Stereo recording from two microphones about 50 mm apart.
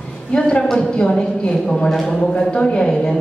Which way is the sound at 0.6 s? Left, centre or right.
Centre.